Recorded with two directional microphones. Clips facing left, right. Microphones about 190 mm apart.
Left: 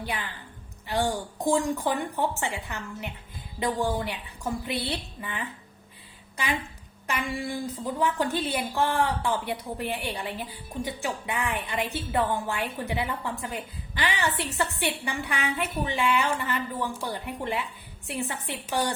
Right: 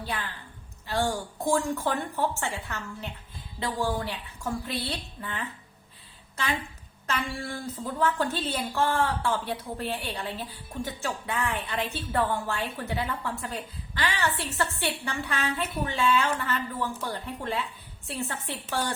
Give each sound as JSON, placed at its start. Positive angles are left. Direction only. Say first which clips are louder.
{"t": 0.0, "sound": "a woman's voice", "louder": "left 1 dB", "side_deg": 15}
{"t": 7.1, "sound": "a woman's voice", "louder": "left 2 dB", "side_deg": 15}